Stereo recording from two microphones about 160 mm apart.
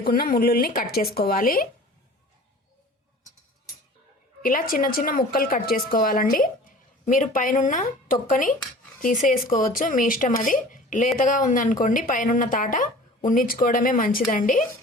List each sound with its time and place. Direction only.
0.0 s speech: 65° left (ahead or behind)
4.4 s speech: 60° left (ahead or behind)